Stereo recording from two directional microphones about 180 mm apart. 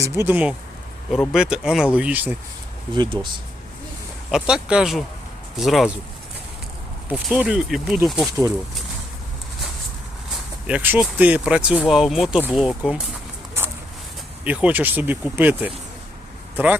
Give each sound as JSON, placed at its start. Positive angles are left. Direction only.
{"t": 0.0, "sound": "speech", "side_deg": -10}
{"t": 2.9, "sound": "speech", "side_deg": -25}
{"t": 4.3, "sound": "speech", "side_deg": -5}
{"t": 7.1, "sound": "speech", "side_deg": -5}
{"t": 10.7, "sound": "speech", "side_deg": -10}
{"t": 14.4, "sound": "speech", "side_deg": -10}